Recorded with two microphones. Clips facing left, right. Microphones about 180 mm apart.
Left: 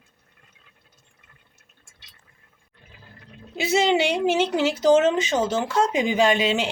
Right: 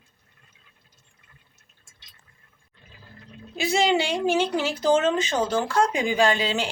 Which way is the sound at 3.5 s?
20° left (ahead or behind).